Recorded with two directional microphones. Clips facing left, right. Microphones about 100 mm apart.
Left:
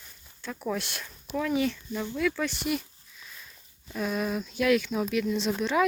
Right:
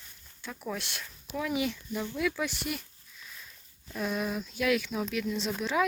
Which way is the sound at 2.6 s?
Centre (ahead or behind).